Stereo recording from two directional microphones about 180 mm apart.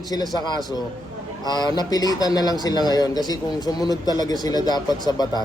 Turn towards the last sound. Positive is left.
turn(degrees=20)  # may be behind; listen again after turning